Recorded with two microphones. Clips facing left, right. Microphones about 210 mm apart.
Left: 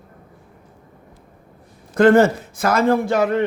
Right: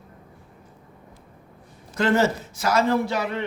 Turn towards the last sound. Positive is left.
turn(degrees=50)  # may be behind; listen again after turning